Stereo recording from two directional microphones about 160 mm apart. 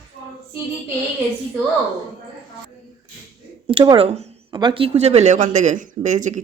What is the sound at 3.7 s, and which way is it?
Speech, 35° right (ahead or behind).